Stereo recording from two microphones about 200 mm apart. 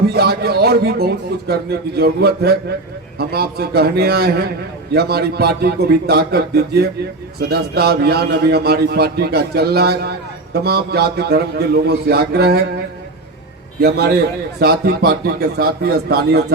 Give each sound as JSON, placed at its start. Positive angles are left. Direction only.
{"t": 0.1, "sound": "a man's voice", "side_deg": -50}
{"t": 13.8, "sound": "a man's voice", "side_deg": -55}